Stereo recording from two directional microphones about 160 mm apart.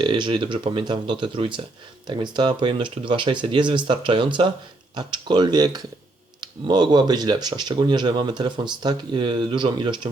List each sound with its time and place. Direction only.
0.0 s speech: 30° right (ahead or behind)